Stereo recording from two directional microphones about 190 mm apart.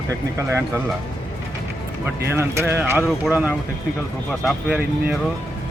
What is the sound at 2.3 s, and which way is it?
Speech, 10° right (ahead or behind).